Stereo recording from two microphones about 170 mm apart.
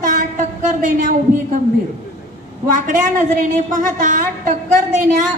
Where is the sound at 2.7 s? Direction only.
50° right (ahead or behind).